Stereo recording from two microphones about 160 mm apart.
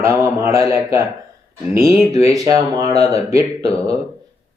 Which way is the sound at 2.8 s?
40° left (ahead or behind).